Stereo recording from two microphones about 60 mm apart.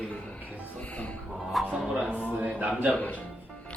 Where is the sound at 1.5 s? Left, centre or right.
Centre.